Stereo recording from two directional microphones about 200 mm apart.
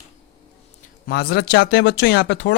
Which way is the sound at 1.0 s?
50° left (ahead or behind).